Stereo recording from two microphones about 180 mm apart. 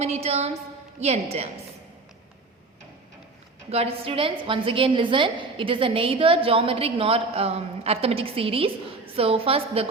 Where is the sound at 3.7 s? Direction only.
35° right (ahead or behind).